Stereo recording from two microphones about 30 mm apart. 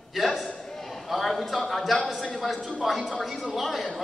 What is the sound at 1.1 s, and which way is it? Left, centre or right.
A man's voice, centre.